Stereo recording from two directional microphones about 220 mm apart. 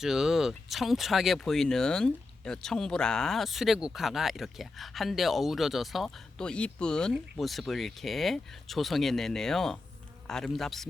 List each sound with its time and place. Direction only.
0.0 s speech: centre (ahead or behind)